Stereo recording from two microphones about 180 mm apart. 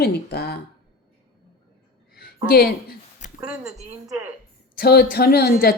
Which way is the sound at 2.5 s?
55° left (ahead or behind).